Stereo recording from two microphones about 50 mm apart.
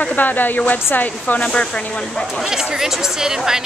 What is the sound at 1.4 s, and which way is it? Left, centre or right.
Speech, left.